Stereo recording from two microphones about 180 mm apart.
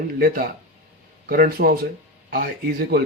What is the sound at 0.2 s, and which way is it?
Speech, 55° right (ahead or behind).